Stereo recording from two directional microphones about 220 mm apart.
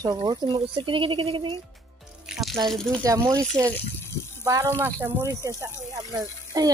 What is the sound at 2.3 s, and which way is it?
Water, centre (ahead or behind).